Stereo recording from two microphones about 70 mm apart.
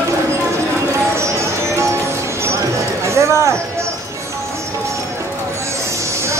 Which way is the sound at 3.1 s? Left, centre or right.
Right.